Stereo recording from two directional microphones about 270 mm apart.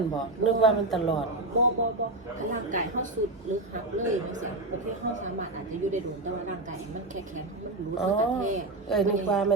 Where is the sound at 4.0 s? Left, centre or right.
Right.